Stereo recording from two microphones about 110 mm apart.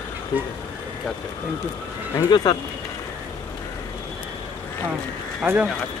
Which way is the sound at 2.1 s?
35° left (ahead or behind).